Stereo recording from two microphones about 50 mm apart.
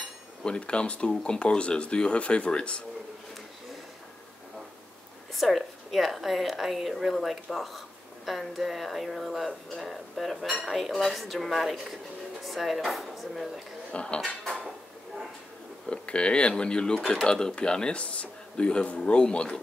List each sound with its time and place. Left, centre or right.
0.4 s speech: centre
5.3 s a woman's voice: centre
13.9 s speech: centre
14.2 s speech: centre
15.9 s speech: left